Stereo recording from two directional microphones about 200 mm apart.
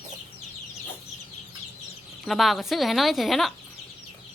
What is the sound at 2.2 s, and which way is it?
A woman's voice, centre (ahead or behind).